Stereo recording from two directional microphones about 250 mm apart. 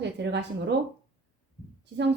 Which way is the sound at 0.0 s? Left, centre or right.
Right.